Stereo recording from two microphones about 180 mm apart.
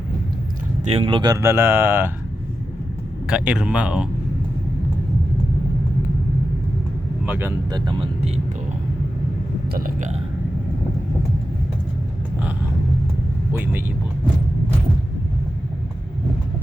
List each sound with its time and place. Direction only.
0.9 s speech: 30° right (ahead or behind); by 2.0 s 10° right (ahead or behind)
3.2 s speech: 5° right (ahead or behind)
7.3 s speech: 10° right (ahead or behind)
7.7 s speech: 25° right (ahead or behind)
9.7 s speech: 50° right (ahead or behind)
13.5 s speech: 10° right (ahead or behind)